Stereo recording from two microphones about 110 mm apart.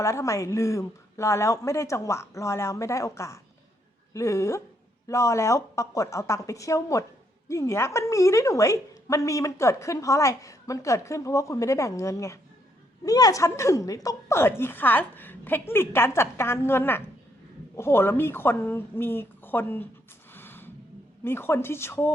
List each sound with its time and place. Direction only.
0.0 s a woman's voice: 30° left (ahead or behind)
20.3 s a sound: 20° left (ahead or behind)
21.2 s a woman's voice: 20° left (ahead or behind)